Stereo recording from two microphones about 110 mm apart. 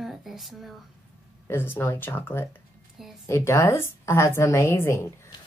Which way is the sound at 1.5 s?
20° left (ahead or behind).